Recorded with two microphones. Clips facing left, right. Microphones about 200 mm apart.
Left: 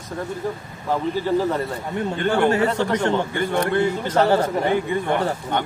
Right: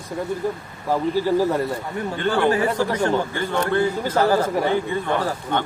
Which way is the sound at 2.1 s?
25° left (ahead or behind).